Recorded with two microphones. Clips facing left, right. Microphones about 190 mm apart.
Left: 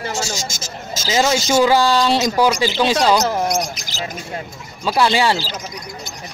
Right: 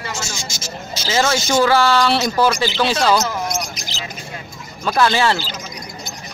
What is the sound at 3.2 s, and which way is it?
Basketball bounce, 35° left (ahead or behind).